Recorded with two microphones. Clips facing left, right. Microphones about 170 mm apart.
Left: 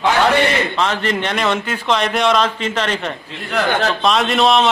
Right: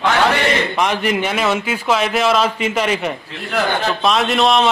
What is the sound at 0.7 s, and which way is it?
A man's voice, 15° right (ahead or behind).